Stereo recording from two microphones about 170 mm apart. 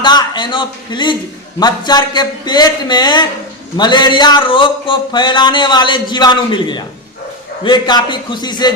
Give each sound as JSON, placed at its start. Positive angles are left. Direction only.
{"t": 0.0, "sound": "speech", "side_deg": 25}